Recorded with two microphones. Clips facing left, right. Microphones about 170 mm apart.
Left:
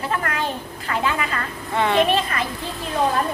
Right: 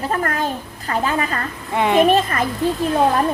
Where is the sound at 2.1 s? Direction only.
45° right (ahead or behind).